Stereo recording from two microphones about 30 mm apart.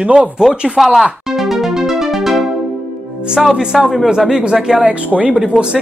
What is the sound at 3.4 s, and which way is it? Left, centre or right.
Speech, centre.